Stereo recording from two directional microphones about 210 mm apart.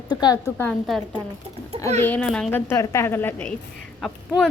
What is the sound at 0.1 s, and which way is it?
Speech, 20° left (ahead or behind).